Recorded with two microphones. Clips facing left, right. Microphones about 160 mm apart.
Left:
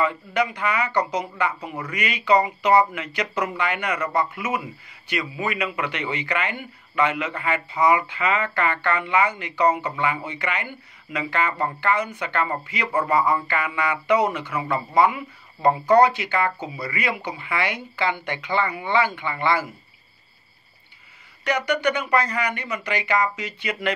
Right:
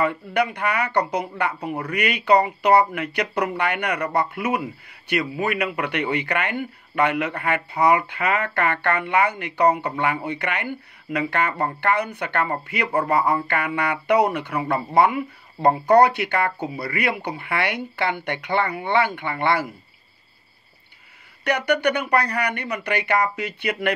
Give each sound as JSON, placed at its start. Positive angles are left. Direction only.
{"t": 0.0, "sound": "a man's voice", "side_deg": -60}
{"t": 21.5, "sound": "a man's voice", "side_deg": -60}